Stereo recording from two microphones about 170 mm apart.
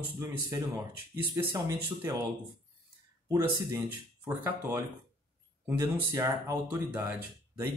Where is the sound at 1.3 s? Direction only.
15° right (ahead or behind).